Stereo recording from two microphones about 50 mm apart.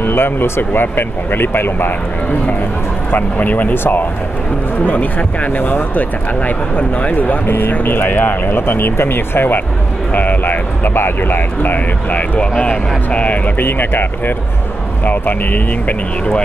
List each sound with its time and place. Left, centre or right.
0.0 s speech: left
3.1 s speech: left
3.7 s speech: left
4.8 s speech: left
12.4 s speech: left
13.7 s speech: left